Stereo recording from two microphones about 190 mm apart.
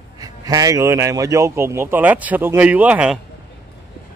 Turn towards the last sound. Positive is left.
turn(degrees=-5)  # may be behind; listen again after turning